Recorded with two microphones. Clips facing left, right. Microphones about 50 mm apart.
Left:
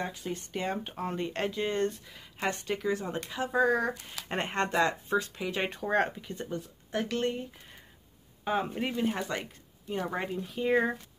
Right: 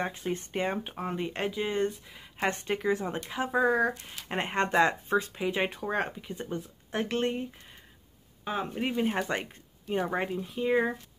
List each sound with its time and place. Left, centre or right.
0.0 s speech: right
0.8 s speech: centre
2.3 s speech: right
5.7 s speech: centre
6.3 s speech: right
8.5 s speech: centre
8.8 s speech: centre